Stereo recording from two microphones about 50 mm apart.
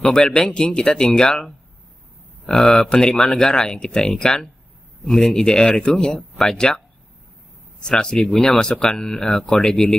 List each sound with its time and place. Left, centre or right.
0.0 s speech: centre
2.4 s speech: centre
7.8 s speech: centre